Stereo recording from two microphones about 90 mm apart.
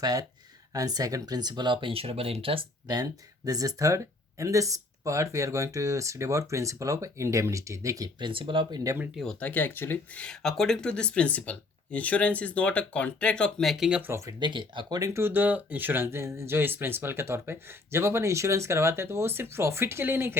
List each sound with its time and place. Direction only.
0.0 s speech: 45° right (ahead or behind); by 2.6 s 90° right
2.8 s speech: 45° right (ahead or behind)
8.2 s speech: 70° right (ahead or behind)
8.7 s speech: 40° right (ahead or behind)
9.4 s speech: 20° left (ahead or behind); by 14.0 s 5° right (ahead or behind)
14.0 s speech: 30° right (ahead or behind)
14.3 s speech: 60° right (ahead or behind)
14.9 s speech: 40° right (ahead or behind)
15.2 s speech: 20° right (ahead or behind)